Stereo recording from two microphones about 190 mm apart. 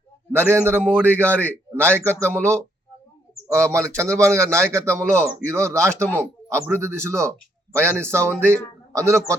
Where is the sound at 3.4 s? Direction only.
15° right (ahead or behind).